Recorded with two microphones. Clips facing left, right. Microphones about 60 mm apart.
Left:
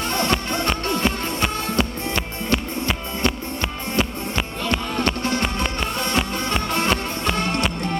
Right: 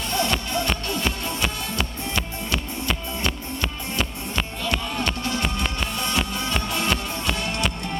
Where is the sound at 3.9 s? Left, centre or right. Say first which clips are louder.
Left 4 dB; left.